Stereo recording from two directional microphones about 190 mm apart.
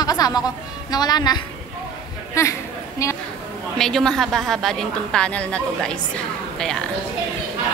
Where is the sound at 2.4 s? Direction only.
15° left (ahead or behind).